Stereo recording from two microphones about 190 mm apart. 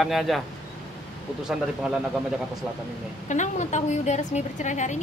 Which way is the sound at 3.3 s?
40° left (ahead or behind).